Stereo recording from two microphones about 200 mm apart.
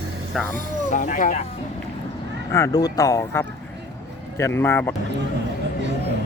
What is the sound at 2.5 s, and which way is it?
Speech, 15° left (ahead or behind).